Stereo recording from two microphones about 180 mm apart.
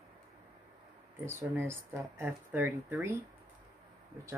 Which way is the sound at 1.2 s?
15° right (ahead or behind).